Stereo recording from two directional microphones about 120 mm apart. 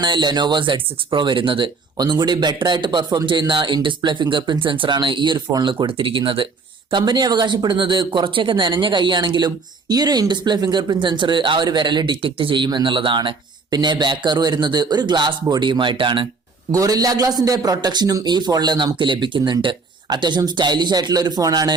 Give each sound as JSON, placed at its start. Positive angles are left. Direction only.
{"t": 0.0, "sound": "speech", "side_deg": -40}
{"t": 16.7, "sound": "speech", "side_deg": -30}